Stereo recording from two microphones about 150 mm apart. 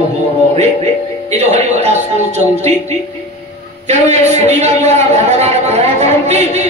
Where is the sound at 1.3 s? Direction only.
45° right (ahead or behind).